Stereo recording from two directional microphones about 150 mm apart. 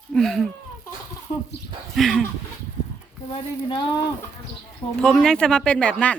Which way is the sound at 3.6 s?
30° left (ahead or behind).